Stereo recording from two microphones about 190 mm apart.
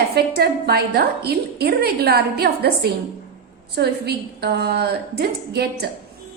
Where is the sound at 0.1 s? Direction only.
55° right (ahead or behind).